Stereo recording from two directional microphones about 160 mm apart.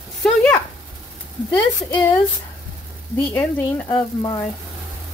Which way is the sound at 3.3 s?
10° left (ahead or behind).